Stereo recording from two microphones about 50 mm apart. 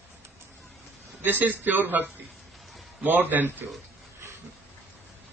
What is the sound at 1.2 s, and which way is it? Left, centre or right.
A man's voice, right.